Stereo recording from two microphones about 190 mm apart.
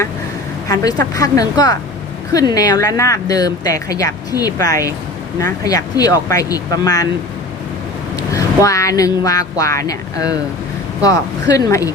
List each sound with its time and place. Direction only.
0.7 s a woman's voice: 20° left (ahead or behind)
8.1 s a woman's voice: 15° left (ahead or behind)